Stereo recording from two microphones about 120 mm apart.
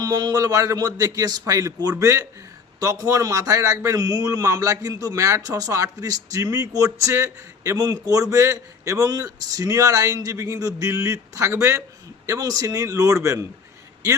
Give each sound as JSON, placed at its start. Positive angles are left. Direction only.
{"t": 0.0, "sound": "a man's voice", "side_deg": -35}